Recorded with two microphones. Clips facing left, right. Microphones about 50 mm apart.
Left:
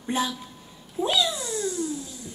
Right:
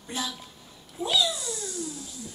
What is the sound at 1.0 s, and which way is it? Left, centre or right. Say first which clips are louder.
Cat: left 1 dB; left.